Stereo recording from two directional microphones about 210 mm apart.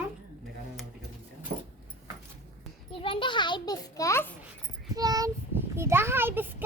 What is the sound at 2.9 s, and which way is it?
A child's voice, 25° left (ahead or behind).